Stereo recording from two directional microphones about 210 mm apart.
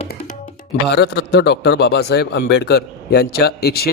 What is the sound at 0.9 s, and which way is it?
A man's voice, 50° left (ahead or behind).